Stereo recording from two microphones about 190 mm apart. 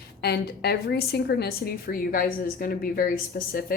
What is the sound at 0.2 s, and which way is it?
A woman's voice, 55° left (ahead or behind).